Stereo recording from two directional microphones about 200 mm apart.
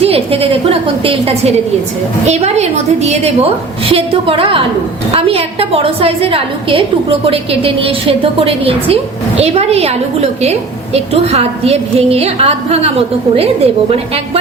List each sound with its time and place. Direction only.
0.0 s a woman's voice: 30° right (ahead or behind)